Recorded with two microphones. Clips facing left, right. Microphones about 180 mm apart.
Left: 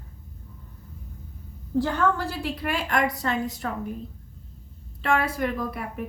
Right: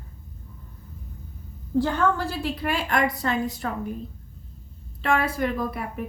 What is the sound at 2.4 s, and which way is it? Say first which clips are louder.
A woman's voice: right 2 dB; 30° right (ahead or behind).